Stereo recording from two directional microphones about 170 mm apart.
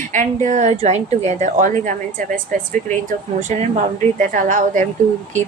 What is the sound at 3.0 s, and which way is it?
A woman's voice, 45° right (ahead or behind).